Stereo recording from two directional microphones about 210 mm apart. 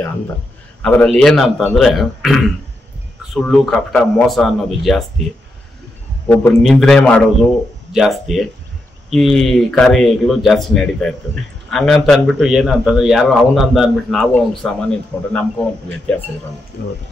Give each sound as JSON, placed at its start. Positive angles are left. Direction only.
{"t": 0.8, "sound": "speech", "side_deg": 5}
{"t": 6.2, "sound": "speech", "side_deg": 10}
{"t": 16.8, "sound": "speech", "side_deg": 50}